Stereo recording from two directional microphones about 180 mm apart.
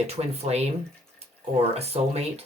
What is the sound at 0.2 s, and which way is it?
Speech, 30° right (ahead or behind).